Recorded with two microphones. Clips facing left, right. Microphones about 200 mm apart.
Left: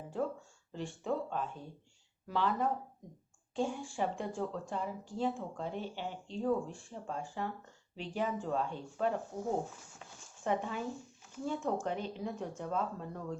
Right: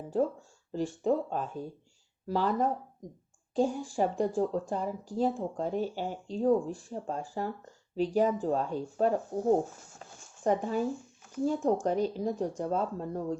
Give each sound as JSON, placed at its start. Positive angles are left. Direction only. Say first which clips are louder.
{"t": 0.7, "sound": "speech", "louder": "right 8 dB", "side_deg": -40}